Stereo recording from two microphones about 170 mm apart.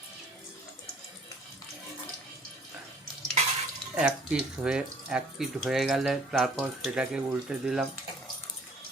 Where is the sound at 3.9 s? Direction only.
5° right (ahead or behind).